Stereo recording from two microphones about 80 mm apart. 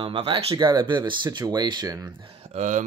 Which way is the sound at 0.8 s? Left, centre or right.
Right.